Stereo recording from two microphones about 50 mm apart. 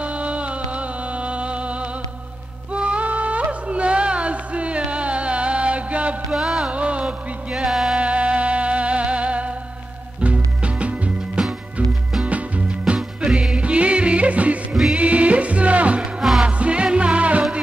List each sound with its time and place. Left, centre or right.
0.0 s music: right
6.3 s music: centre
6.7 s music: right
7.5 s music: centre
8.0 s music: right
12.6 s music: centre
13.6 s music: right
14.7 s music: centre
15.0 s music: right
16.0 s music: centre
16.4 s music: right